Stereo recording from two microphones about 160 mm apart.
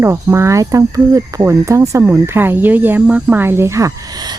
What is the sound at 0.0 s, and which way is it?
Speech, 15° right (ahead or behind).